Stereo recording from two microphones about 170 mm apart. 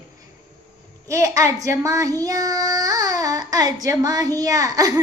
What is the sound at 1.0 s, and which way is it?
Speech, 20° right (ahead or behind).